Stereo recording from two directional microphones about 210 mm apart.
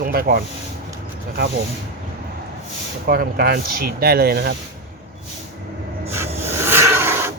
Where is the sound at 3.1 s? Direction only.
45° right (ahead or behind).